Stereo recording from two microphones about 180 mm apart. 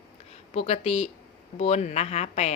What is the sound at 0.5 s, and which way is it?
Speech, 35° left (ahead or behind).